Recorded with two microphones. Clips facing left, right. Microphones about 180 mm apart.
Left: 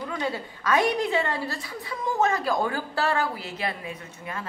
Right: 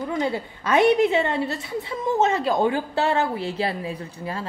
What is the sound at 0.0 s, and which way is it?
A woman's voice, 25° right (ahead or behind).